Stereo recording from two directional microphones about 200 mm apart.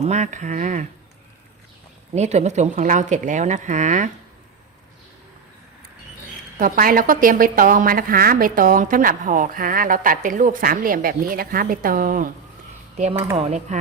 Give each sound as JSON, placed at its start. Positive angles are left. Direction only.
{"t": 0.0, "sound": "a woman's voice", "side_deg": -35}
{"t": 2.1, "sound": "a woman's voice", "side_deg": -35}
{"t": 6.6, "sound": "a woman's voice", "side_deg": -45}
{"t": 13.3, "sound": "a woman's voice", "side_deg": -35}